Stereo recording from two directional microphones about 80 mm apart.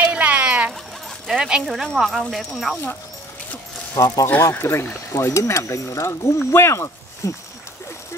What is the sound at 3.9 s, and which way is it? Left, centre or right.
Speech, left.